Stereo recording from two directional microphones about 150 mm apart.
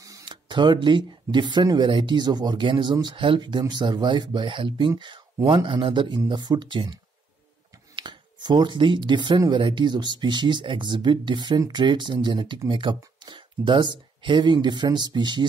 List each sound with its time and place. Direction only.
0.0 s speech: 25° right (ahead or behind)